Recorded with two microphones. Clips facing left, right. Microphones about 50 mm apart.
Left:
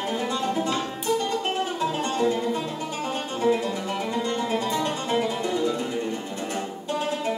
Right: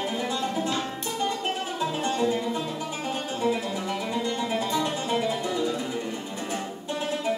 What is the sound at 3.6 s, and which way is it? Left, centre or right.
Music, left.